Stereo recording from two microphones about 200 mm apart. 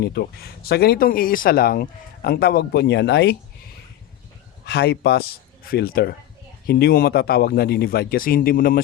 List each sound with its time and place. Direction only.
0.0 s speech: 55° left (ahead or behind)
4.6 s a man's voice: 55° left (ahead or behind)